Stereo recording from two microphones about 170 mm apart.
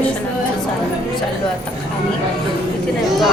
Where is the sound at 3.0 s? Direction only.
Centre (ahead or behind).